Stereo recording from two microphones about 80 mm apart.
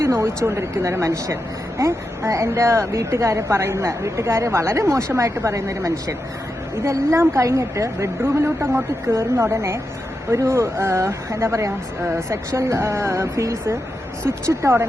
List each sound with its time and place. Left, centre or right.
0.0 s a woman's voice: right